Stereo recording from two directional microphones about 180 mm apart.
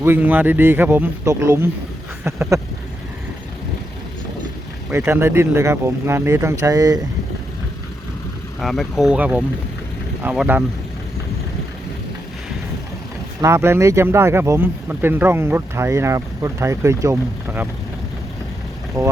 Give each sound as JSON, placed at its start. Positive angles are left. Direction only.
{"t": 0.0, "sound": "speech", "side_deg": -10}
{"t": 4.9, "sound": "speech", "side_deg": -10}
{"t": 8.6, "sound": "speech", "side_deg": 0}
{"t": 13.4, "sound": "speech", "side_deg": -15}
{"t": 19.0, "sound": "speech", "side_deg": -20}